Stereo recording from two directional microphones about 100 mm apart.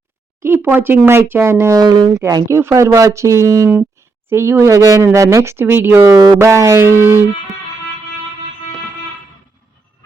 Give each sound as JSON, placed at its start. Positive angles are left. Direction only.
{"t": 0.4, "sound": "speech", "side_deg": -20}
{"t": 1.8, "sound": "speech", "side_deg": -45}
{"t": 2.1, "sound": "speech", "side_deg": -30}
{"t": 6.1, "sound": "speech", "side_deg": -40}
{"t": 6.4, "sound": "speech", "side_deg": -30}